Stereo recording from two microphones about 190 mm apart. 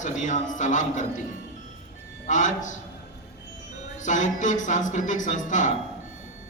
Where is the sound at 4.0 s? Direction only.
40° left (ahead or behind).